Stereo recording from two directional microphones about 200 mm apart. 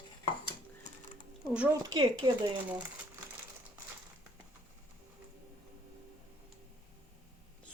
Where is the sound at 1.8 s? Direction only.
20° right (ahead or behind).